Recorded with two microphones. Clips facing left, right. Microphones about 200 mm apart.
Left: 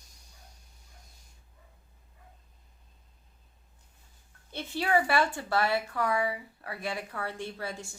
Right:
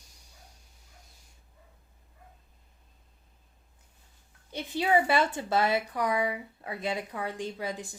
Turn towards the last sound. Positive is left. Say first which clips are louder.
# right 3 dB
turn(degrees=-15)  # may be behind; listen again after turning